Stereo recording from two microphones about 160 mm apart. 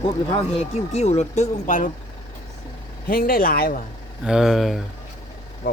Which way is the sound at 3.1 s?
65° left (ahead or behind).